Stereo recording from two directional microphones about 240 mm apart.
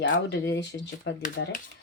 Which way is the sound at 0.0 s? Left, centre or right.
Left.